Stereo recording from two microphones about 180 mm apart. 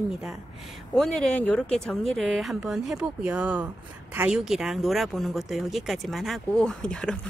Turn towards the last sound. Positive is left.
turn(degrees=5)  # may be behind; listen again after turning